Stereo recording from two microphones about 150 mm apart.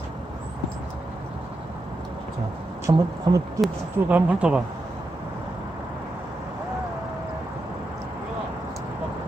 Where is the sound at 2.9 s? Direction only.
25° right (ahead or behind).